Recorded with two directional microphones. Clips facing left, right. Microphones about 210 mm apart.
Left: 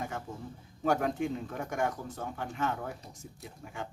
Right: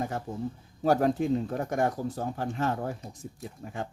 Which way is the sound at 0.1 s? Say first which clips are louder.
Right 7 dB; 35° right (ahead or behind).